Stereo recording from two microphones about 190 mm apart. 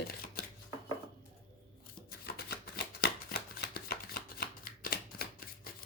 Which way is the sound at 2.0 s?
55° left (ahead or behind).